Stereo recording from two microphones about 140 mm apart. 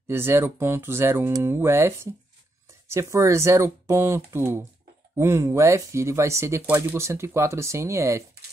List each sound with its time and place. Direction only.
0.0 s speech: 15° right (ahead or behind)